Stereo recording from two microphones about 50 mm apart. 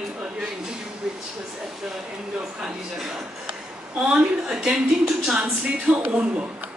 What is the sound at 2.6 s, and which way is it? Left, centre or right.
Speech, centre.